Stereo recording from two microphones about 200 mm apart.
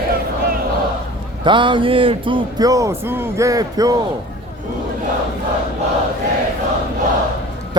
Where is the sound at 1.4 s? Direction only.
25° right (ahead or behind).